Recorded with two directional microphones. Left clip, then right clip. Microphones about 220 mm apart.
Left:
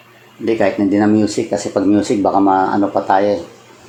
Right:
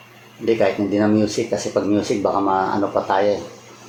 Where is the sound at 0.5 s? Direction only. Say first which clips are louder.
Left 5 dB; 45° left (ahead or behind).